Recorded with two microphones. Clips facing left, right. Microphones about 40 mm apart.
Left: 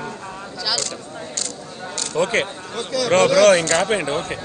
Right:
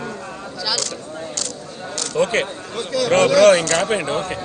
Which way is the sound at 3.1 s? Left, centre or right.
Right.